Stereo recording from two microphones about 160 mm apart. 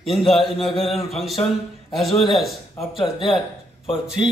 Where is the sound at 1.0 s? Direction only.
Centre (ahead or behind).